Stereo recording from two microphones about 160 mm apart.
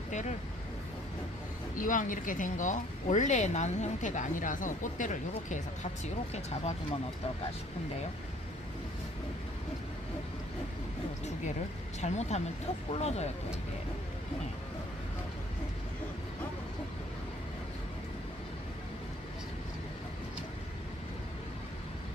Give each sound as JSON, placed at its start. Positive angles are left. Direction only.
{"t": 0.1, "sound": "vehicle", "side_deg": 50}
{"t": 1.8, "sound": "speech", "side_deg": 55}
{"t": 11.9, "sound": "speech", "side_deg": 45}